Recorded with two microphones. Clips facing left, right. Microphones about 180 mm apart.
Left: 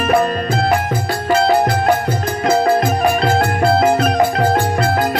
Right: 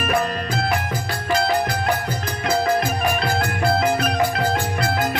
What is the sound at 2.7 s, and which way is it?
Music, 35° left (ahead or behind).